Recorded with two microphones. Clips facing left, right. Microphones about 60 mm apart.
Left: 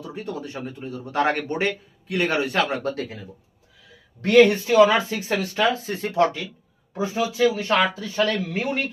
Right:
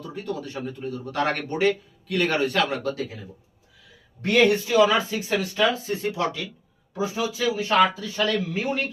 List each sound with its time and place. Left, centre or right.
0.0 s speech: centre
2.8 s speech: left
4.4 s speech: left